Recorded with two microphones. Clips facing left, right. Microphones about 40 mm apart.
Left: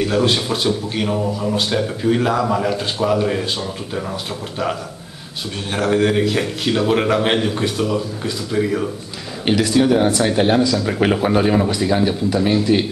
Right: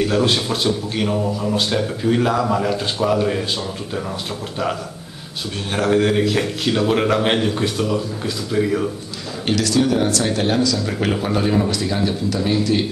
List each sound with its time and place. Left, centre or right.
0.0 s a man's voice: centre
5.7 s a man's voice: centre
9.5 s speech: centre